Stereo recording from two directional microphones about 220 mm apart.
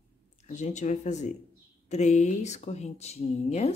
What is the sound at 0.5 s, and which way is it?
Speech, 35° left (ahead or behind).